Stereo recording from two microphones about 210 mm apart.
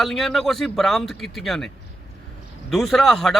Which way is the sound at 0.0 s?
Centre (ahead or behind).